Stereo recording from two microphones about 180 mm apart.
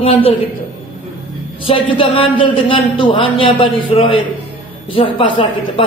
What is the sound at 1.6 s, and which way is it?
A man's voice, 30° left (ahead or behind).